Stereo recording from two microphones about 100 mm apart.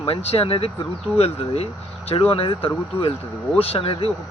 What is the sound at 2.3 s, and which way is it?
Speech, 70° left (ahead or behind).